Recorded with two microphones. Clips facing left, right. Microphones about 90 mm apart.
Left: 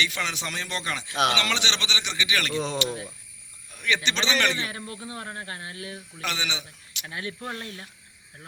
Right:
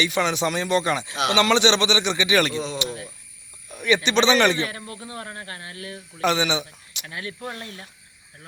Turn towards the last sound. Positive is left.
turn(degrees=25)  # may be behind; listen again after turning